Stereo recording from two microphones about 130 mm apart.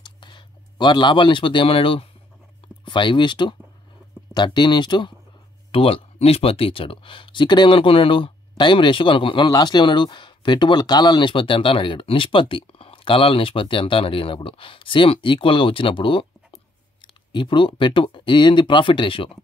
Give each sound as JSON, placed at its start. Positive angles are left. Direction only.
{"t": 0.0, "sound": "speech", "side_deg": 35}